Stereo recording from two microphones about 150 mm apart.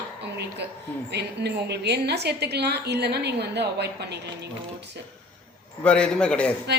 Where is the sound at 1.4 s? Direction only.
90° right.